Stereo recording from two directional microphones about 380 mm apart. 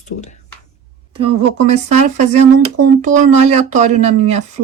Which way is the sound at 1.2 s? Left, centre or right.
Centre.